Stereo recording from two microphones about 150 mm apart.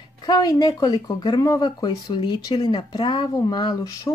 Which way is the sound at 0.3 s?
25° left (ahead or behind).